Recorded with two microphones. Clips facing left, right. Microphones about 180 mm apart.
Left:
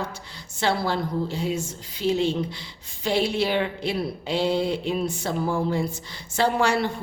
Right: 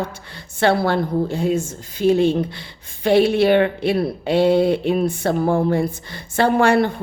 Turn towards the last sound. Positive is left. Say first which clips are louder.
# right 7 dB
turn(degrees=-55)  # may be behind; listen again after turning